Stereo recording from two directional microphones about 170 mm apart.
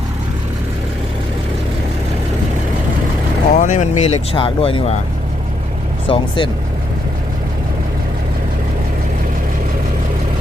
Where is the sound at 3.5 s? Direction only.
45° left (ahead or behind).